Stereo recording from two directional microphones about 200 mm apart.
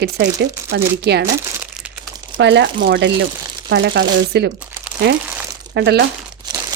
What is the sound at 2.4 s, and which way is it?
Speech, 60° right (ahead or behind).